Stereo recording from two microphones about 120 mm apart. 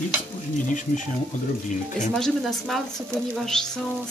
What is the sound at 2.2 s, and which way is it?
Speech, centre (ahead or behind).